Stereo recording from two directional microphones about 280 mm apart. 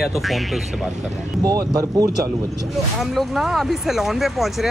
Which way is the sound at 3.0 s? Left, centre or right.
Centre.